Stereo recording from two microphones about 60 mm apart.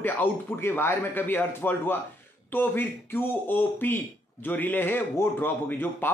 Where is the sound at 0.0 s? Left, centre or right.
Left.